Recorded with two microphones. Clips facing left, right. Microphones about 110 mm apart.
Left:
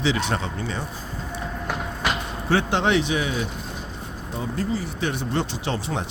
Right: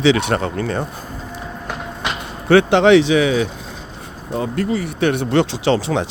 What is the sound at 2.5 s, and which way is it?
Speech, 75° right (ahead or behind).